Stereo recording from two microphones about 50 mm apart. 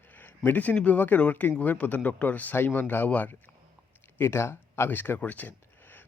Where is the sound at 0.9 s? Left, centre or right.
Left.